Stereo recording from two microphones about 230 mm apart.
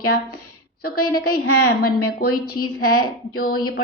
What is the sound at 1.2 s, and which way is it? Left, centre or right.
A woman's voice, left.